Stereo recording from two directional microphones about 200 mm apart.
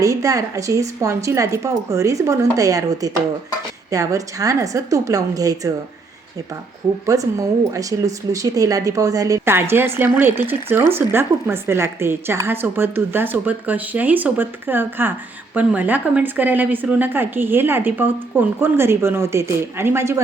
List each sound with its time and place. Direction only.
0.0 s speech: 15° right (ahead or behind)
7.0 s speech: 15° right (ahead or behind)